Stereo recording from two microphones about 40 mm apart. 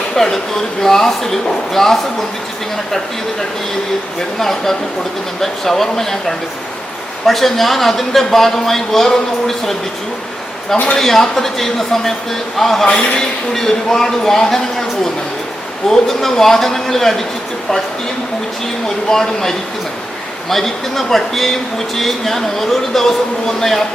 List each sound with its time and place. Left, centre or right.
0.2 s speech: centre
4.4 s speech: centre
10.9 s speech: centre
12.9 s a man's voice: left
13.5 s speech: centre
19.1 s speech: centre